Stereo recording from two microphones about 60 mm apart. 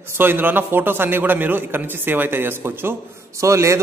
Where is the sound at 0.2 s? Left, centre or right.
Right.